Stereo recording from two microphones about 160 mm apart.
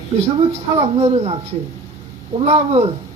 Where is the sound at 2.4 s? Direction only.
35° right (ahead or behind).